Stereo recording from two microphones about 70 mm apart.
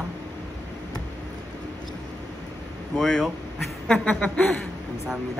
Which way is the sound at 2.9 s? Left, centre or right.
Centre.